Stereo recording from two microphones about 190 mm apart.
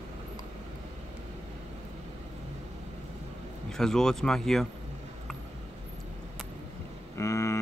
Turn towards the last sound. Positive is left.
turn(degrees=15)  # may be behind; listen again after turning